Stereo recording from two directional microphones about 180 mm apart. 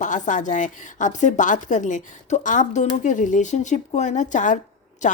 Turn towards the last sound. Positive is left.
turn(degrees=40)  # may be behind; listen again after turning